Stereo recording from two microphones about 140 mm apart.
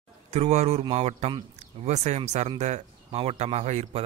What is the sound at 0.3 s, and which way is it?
A man's voice, 50° right (ahead or behind).